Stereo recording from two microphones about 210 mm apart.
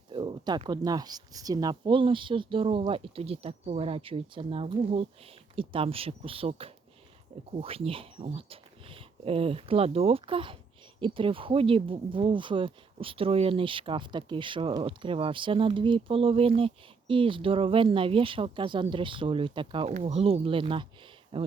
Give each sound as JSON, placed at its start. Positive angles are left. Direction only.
{"t": 0.1, "sound": "speech", "side_deg": -20}